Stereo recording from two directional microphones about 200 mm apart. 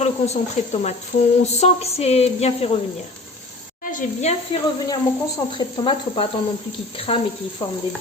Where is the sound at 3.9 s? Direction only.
35° left (ahead or behind).